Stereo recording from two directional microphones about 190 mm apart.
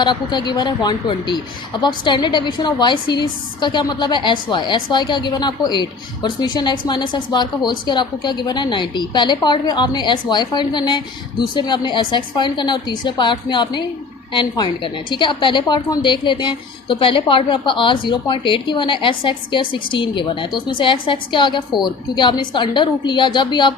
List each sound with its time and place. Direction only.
0.0 s a woman's voice: 25° left (ahead or behind)